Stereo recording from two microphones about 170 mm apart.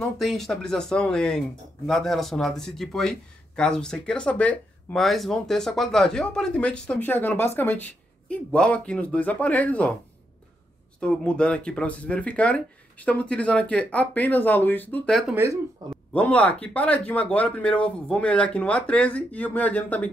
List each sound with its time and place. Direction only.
0.0 s speech: centre (ahead or behind)
11.0 s speech: 5° left (ahead or behind)
15.3 s speech: 15° right (ahead or behind)
16.1 s speech: 5° left (ahead or behind)